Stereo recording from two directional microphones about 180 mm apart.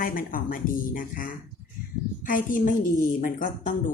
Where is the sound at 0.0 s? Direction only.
50° left (ahead or behind).